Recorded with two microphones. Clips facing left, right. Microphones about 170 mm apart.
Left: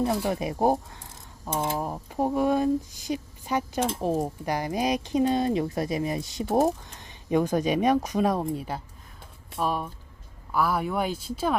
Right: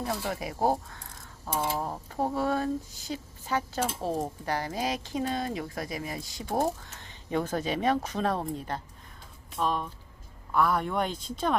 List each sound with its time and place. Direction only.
0.0 s speech: 20° left (ahead or behind)